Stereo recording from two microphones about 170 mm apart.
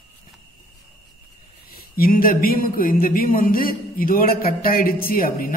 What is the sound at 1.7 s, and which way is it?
Speech, 60° left (ahead or behind).